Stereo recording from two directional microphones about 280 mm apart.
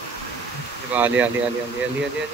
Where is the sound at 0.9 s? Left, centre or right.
Centre.